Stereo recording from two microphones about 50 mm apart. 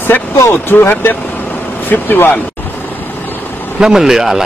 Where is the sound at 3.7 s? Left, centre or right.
Centre.